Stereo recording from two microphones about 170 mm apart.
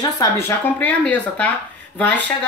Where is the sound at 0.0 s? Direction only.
20° left (ahead or behind).